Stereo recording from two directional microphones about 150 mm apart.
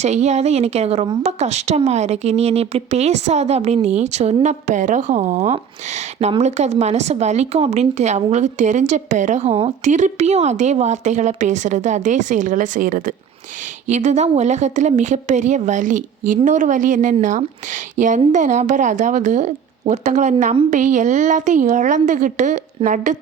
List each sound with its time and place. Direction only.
0.0 s a woman's voice: 50° right (ahead or behind); by 13.1 s 65° right (ahead or behind)
13.8 s a woman's voice: 50° right (ahead or behind)